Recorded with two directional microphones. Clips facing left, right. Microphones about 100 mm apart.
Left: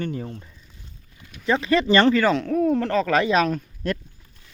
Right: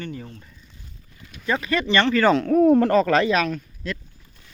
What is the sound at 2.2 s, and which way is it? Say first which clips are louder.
Speech: right 4 dB; centre (ahead or behind).